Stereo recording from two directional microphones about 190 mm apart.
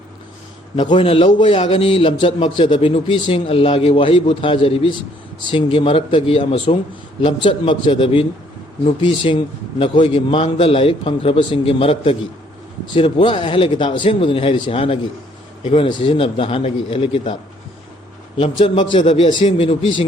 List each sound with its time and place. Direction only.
0.8 s a man's voice: 25° left (ahead or behind)
18.6 s a man's voice: 25° left (ahead or behind)